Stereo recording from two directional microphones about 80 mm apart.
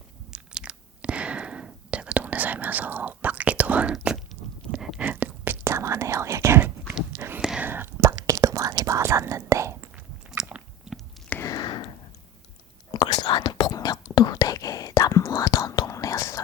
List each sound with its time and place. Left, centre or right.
0.3 s whispering: centre
4.9 s a sound: right
5.6 s whispering: right
7.3 s whispering: centre
7.6 s whispering: right
10.4 s biting: centre
11.5 s whispering: left
12.9 s whispering: left